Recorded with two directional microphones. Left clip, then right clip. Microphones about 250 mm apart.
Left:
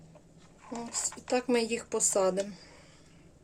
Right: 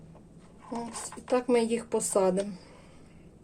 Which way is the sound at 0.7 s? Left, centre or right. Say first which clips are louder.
Even; centre.